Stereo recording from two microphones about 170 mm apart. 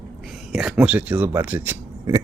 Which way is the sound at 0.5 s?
5° right (ahead or behind).